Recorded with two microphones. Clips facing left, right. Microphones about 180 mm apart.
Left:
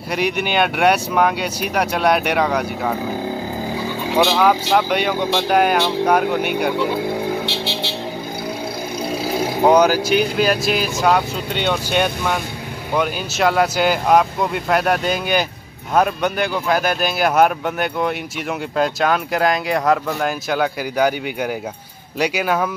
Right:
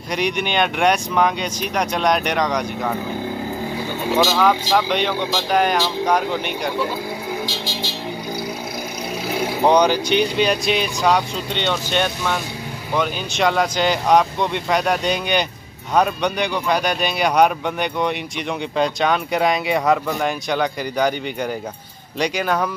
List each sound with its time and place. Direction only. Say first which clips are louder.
0.1 s speech: left 1 dB; 5° left (ahead or behind)
4.4 s speech: left 1 dB; 10° left (ahead or behind)
7.4 s vehicle: left 3 dB; 60° left (ahead or behind)
9.7 s speech: left 2 dB; 5° left (ahead or behind)